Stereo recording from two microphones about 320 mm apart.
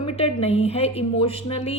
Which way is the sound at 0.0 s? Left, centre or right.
Centre.